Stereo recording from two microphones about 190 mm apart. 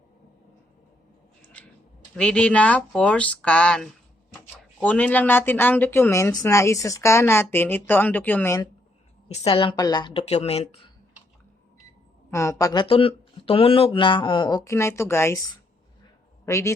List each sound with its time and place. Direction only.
1.6 s a sound: 5° left (ahead or behind)
2.1 s speech: 5° left (ahead or behind)
9.3 s a woman's voice: 30° left (ahead or behind)
12.3 s speech: 15° left (ahead or behind)
16.5 s speech: 15° left (ahead or behind)